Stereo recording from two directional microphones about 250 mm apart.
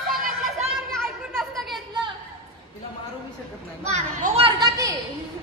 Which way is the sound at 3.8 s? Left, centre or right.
Right.